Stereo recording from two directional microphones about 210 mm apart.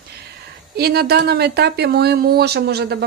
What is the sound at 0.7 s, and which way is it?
Speech, 50° right (ahead or behind).